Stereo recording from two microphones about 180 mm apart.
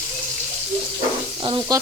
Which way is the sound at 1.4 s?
25° right (ahead or behind).